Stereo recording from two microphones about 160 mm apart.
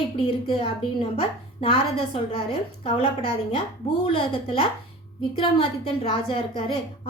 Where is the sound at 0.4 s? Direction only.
35° left (ahead or behind).